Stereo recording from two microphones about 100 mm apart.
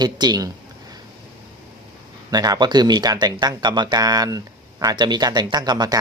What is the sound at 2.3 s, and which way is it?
Speech, 40° right (ahead or behind).